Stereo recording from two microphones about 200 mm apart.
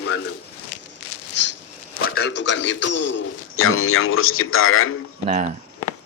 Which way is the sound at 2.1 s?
60° left (ahead or behind).